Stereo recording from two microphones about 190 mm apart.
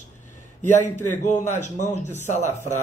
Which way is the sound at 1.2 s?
40° left (ahead or behind).